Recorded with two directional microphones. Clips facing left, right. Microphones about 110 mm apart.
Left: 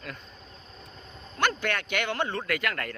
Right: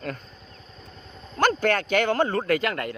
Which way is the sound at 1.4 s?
40° right (ahead or behind).